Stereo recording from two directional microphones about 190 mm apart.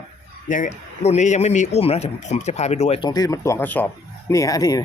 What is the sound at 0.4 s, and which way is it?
Speech, 40° left (ahead or behind).